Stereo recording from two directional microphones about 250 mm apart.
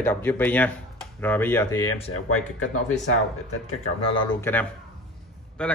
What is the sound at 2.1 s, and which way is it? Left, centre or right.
Speech, left.